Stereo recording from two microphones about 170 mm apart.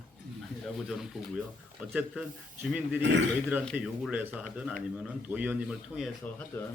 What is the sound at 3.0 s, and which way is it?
Speech, 90° right.